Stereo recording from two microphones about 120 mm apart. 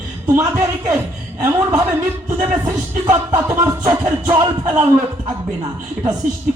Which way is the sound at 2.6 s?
25° right (ahead or behind).